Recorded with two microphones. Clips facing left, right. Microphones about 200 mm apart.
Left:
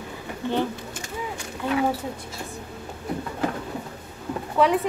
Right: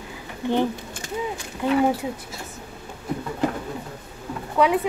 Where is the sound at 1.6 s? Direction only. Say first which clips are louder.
Right 4 dB; 15° right (ahead or behind).